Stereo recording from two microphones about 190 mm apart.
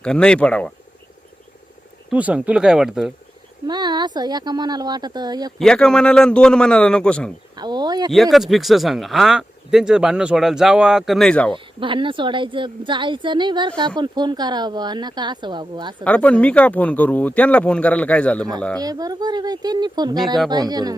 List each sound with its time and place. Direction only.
0.0 s speech: 5° left (ahead or behind)
2.0 s speech: 5° right (ahead or behind)
3.7 s a woman's voice: 20° right (ahead or behind)
5.5 s speech: 5° left (ahead or behind)
7.5 s speech: 20° right (ahead or behind)
8.1 s speech: centre (ahead or behind)
11.5 s a woman's voice: 25° right (ahead or behind)
16.0 s speech: 5° left (ahead or behind)
18.8 s a woman's voice: 20° right (ahead or behind)